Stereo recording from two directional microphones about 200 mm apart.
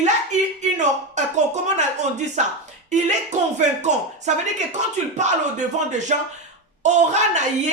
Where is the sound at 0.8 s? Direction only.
35° right (ahead or behind).